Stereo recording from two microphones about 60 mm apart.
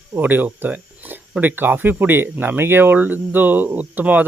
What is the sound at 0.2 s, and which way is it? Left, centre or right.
Speech, right.